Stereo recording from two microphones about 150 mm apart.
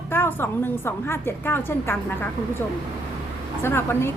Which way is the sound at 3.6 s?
15° left (ahead or behind).